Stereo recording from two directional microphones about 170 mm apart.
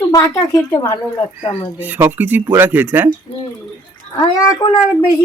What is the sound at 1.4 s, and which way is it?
Speech, 35° left (ahead or behind).